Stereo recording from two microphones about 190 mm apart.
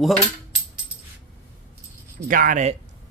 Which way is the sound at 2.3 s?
45° right (ahead or behind).